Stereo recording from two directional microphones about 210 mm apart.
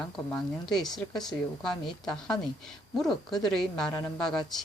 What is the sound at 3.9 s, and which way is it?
Speech, 15° left (ahead or behind).